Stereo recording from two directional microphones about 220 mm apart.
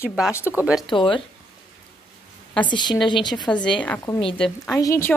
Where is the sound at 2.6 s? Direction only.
20° left (ahead or behind).